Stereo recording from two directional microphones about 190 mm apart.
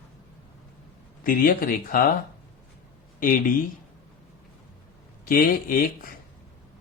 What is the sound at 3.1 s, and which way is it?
Speech, 45° left (ahead or behind).